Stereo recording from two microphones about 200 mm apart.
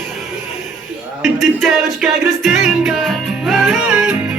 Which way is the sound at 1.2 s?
Centre (ahead or behind).